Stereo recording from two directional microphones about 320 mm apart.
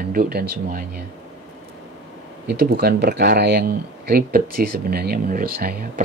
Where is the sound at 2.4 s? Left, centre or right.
Right.